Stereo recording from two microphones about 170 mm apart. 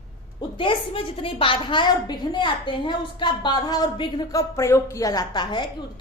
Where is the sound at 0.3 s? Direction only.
30° left (ahead or behind).